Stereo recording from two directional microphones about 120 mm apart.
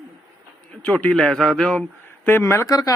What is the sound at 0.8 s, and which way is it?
A man's voice, 10° left (ahead or behind).